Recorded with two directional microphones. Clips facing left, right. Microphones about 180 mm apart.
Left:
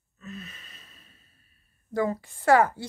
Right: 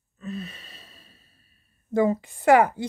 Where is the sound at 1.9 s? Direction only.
20° right (ahead or behind).